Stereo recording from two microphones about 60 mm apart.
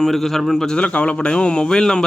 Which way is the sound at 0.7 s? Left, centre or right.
Centre.